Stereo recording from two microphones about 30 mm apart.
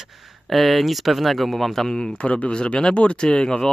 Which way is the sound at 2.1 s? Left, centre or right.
Left.